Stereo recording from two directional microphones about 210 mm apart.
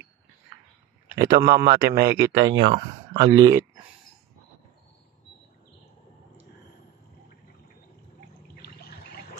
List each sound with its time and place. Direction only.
1.1 s speech: 15° right (ahead or behind)
1.7 s speech: 45° right (ahead or behind)
2.6 s speech: 25° right (ahead or behind)